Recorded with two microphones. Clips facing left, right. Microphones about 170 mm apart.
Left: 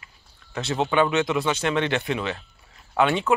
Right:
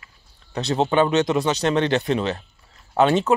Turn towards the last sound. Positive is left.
turn(degrees=-35)  # may be behind; listen again after turning